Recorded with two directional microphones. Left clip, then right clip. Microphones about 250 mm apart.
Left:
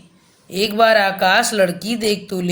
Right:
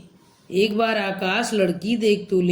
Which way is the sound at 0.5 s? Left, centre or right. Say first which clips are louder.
Left 7 dB; left.